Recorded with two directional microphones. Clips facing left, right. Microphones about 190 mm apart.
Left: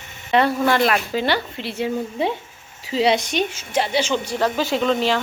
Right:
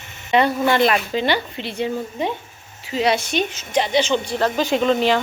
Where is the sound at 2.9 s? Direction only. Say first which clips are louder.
Left 1 dB; 30° left (ahead or behind).